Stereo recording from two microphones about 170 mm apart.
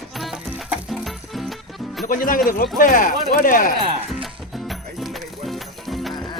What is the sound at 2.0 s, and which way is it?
Speech, 55° left (ahead or behind).